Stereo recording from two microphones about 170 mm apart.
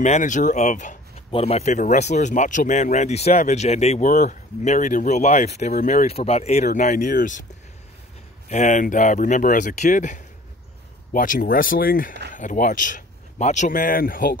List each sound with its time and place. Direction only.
0.0 s speech: 45° left (ahead or behind)
8.5 s speech: 45° left (ahead or behind)